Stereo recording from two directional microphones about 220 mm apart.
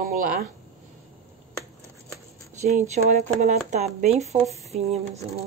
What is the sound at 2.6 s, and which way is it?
Speech, 30° right (ahead or behind).